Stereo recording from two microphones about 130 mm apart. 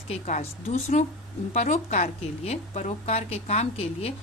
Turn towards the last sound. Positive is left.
turn(degrees=50)  # may be behind; listen again after turning